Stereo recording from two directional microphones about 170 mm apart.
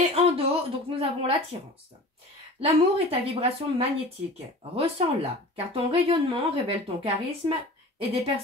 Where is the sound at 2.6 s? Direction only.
35° right (ahead or behind).